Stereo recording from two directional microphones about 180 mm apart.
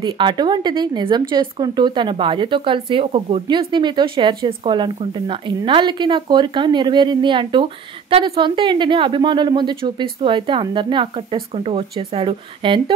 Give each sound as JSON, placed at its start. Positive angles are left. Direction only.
{"t": 0.0, "sound": "speech", "side_deg": -25}